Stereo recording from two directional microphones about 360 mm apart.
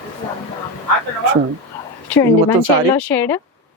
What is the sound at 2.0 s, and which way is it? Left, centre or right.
A woman's voice, centre.